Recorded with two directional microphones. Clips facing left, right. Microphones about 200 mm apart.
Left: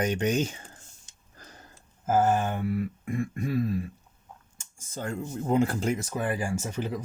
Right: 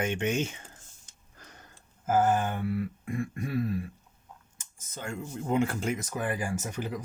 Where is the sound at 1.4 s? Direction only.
35° left (ahead or behind).